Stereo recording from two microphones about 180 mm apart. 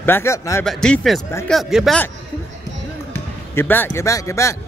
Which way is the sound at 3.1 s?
10° left (ahead or behind).